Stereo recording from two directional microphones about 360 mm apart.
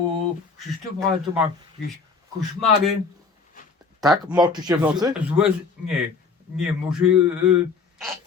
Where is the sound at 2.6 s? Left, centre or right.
Centre.